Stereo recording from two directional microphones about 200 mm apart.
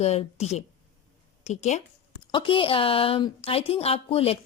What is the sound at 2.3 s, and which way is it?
Speech, 25° left (ahead or behind).